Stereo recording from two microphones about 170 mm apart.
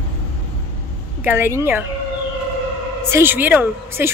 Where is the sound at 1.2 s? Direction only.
10° right (ahead or behind).